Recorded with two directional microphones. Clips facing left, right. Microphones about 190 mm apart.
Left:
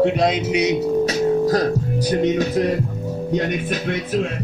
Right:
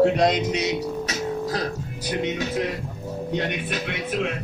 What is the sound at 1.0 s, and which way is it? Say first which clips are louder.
Music: left 10 dB; 35° left (ahead or behind).